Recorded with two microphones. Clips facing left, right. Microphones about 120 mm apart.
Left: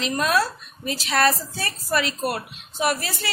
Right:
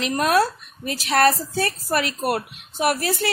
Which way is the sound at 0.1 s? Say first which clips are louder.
Right 4 dB; 55° right (ahead or behind).